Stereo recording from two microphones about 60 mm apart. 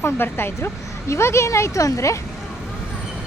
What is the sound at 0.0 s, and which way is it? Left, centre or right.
Speech, left.